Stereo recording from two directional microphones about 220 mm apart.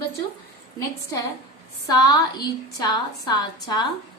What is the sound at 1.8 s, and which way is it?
A woman's voice, 15° left (ahead or behind).